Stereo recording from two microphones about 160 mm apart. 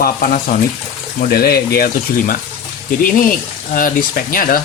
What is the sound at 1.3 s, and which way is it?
Speech, 75° left (ahead or behind).